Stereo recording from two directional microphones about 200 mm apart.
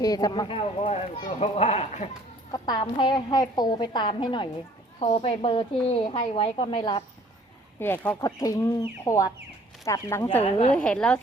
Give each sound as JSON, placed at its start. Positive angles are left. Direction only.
{"t": 0.0, "sound": "speech", "side_deg": 20}
{"t": 2.5, "sound": "speech", "side_deg": 20}
{"t": 7.8, "sound": "speech", "side_deg": 10}
{"t": 10.4, "sound": "a woman's voice", "side_deg": 30}
{"t": 10.8, "sound": "a woman's voice", "side_deg": 5}